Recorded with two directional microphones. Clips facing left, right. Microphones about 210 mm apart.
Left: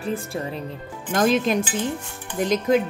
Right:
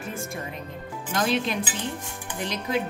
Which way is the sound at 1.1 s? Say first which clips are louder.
Left 6 dB; 45° left (ahead or behind).